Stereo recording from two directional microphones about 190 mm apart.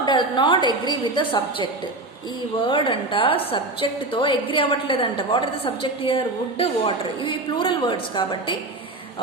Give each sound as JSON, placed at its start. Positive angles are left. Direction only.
{"t": 0.0, "sound": "a woman's voice", "side_deg": 25}
{"t": 2.6, "sound": "a woman's voice", "side_deg": 25}